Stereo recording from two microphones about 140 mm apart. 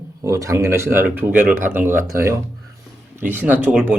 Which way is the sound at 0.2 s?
25° right (ahead or behind).